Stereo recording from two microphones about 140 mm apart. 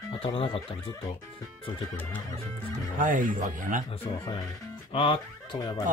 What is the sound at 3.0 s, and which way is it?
Speech, 70° right (ahead or behind).